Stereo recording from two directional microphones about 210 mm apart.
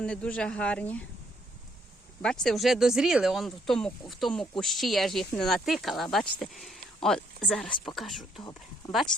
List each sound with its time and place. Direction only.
0.0 s speech: 5° left (ahead or behind)
2.2 s speech: 5° left (ahead or behind)